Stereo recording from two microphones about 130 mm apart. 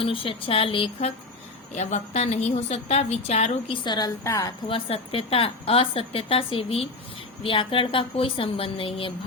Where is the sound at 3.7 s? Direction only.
35° left (ahead or behind).